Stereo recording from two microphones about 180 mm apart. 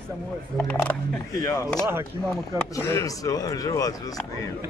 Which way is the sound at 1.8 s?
15° right (ahead or behind).